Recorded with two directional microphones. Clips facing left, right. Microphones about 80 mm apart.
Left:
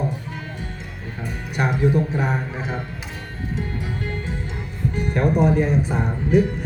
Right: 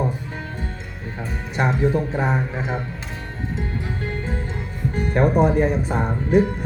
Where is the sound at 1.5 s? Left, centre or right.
Right.